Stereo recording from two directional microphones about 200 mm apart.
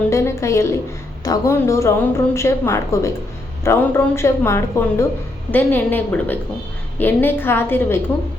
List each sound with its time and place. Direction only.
0.1 s a woman's voice: 15° left (ahead or behind)